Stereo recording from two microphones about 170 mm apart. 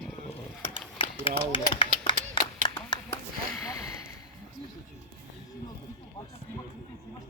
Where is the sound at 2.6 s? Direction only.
25° left (ahead or behind).